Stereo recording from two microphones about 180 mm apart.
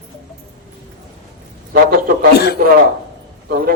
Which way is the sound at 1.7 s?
55° right (ahead or behind).